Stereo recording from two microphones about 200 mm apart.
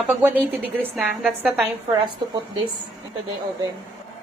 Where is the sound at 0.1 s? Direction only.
10° right (ahead or behind).